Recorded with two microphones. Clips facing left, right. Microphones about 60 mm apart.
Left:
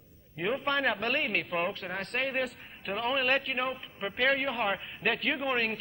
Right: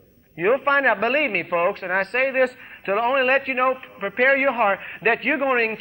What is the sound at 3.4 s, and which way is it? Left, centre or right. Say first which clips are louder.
Speech: right 11 dB; right.